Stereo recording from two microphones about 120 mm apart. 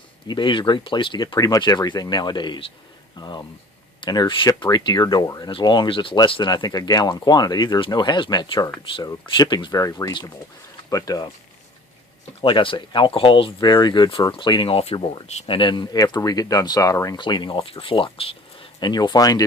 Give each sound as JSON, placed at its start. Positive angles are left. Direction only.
{"t": 0.3, "sound": "speech", "side_deg": 40}
{"t": 12.4, "sound": "speech", "side_deg": 45}
{"t": 17.2, "sound": "speech", "side_deg": 40}
{"t": 18.9, "sound": "speech", "side_deg": 35}